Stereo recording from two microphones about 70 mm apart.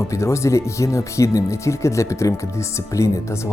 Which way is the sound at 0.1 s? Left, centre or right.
Left.